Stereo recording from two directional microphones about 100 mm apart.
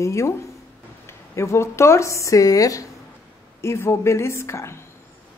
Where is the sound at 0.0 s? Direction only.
30° left (ahead or behind).